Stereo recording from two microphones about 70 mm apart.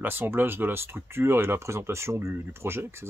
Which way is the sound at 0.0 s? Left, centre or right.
Right.